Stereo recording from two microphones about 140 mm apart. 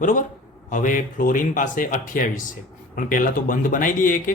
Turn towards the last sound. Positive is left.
turn(degrees=75)  # may be behind; listen again after turning